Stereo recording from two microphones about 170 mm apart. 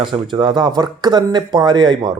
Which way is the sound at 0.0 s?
25° right (ahead or behind).